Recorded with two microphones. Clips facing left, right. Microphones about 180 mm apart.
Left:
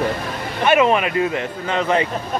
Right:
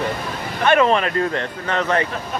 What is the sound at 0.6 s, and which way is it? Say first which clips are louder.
Speech: even; 10° left (ahead or behind).